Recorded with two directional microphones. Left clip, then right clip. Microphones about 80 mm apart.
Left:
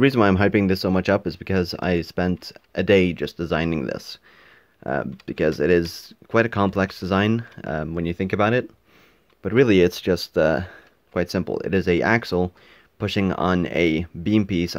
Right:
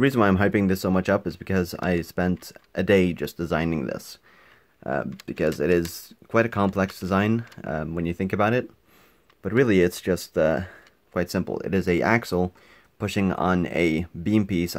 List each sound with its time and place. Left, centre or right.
0.0 s speech: centre